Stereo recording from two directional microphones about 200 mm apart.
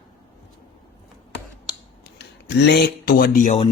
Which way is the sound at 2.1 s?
55° left (ahead or behind).